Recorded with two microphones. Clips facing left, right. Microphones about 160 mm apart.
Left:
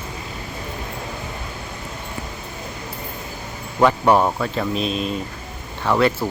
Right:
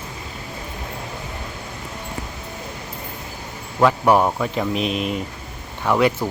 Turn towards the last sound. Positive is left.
turn(degrees=-15)  # may be behind; listen again after turning